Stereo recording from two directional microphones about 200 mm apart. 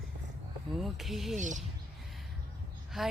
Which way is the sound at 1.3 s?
40° right (ahead or behind).